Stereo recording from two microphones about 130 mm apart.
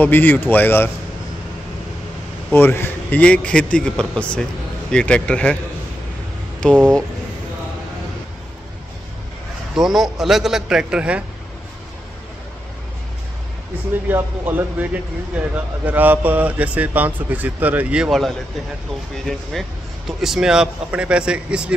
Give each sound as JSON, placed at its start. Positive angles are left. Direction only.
{"t": 0.0, "sound": "a man's voice", "side_deg": 15}
{"t": 2.5, "sound": "a man's voice", "side_deg": 15}
{"t": 6.6, "sound": "a man's voice", "side_deg": 5}
{"t": 9.8, "sound": "a man's voice", "side_deg": -5}
{"t": 14.0, "sound": "a man's voice", "side_deg": -15}